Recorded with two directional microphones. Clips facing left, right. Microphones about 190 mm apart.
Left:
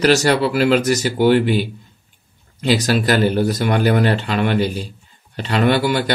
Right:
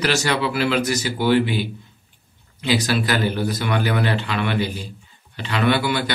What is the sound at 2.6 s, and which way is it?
Speech, 40° left (ahead or behind).